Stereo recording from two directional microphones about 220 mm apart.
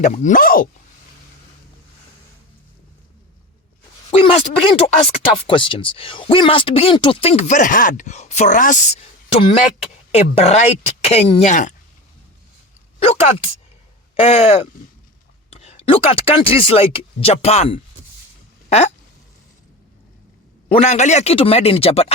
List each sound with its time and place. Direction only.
0.0 s speech: 35° left (ahead or behind)
4.1 s speech: 25° left (ahead or behind)
13.0 s a sound: 25° left (ahead or behind)
14.2 s speech: 25° left (ahead or behind)
20.7 s speech: 30° left (ahead or behind)